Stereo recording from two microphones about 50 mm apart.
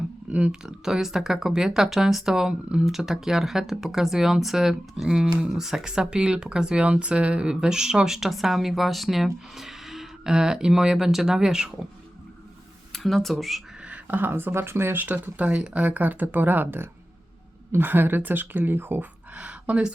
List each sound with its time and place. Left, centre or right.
0.3 s speech: right
0.6 s speech: centre
7.5 s speech: centre
12.9 s speech: centre
14.1 s a woman's voice: right
15.0 s a woman's voice: right
19.3 s a sound: right